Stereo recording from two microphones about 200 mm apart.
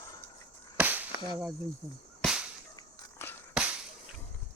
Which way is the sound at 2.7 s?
10° left (ahead or behind).